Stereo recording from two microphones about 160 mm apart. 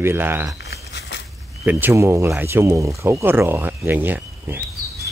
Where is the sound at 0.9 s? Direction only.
90° left.